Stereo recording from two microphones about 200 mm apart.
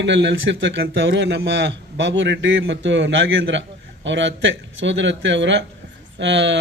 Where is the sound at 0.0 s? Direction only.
60° right (ahead or behind).